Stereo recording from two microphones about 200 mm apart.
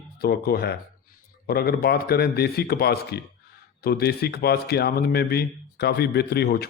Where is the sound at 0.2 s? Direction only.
50° left (ahead or behind).